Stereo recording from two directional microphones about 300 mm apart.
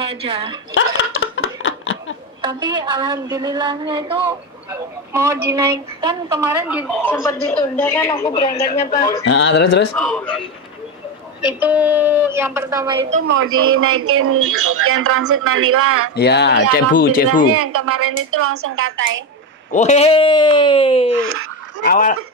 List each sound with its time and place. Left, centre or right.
0.0 s speech: centre
0.7 s a sound: left
2.4 s speech: centre
7.1 s speech: centre
9.2 s speech: left
9.9 s a man's voice: centre
11.4 s speech: centre
13.3 s a man's voice: right
16.2 s speech: left
17.5 s a man's voice: right
19.7 s speech: left